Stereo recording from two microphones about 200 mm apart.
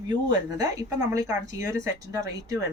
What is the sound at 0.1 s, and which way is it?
Speech, 20° right (ahead or behind).